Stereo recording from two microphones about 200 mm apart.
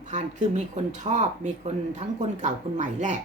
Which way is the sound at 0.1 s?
35° right (ahead or behind).